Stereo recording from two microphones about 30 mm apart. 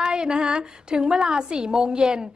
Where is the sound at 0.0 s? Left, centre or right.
Right.